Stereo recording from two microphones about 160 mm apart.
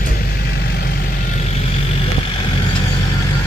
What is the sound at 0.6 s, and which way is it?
Vehicle, 80° left.